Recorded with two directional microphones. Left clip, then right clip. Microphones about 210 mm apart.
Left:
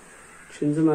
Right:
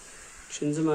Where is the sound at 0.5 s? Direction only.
10° right (ahead or behind).